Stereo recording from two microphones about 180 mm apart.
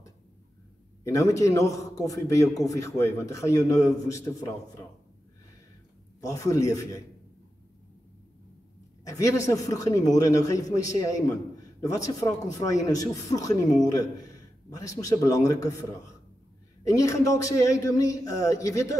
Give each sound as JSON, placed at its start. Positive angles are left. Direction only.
{"t": 1.0, "sound": "a man's voice", "side_deg": 15}
{"t": 6.2, "sound": "a man's voice", "side_deg": 15}
{"t": 9.0, "sound": "a man's voice", "side_deg": 20}